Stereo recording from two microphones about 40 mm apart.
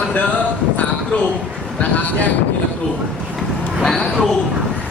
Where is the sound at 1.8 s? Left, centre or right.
Left.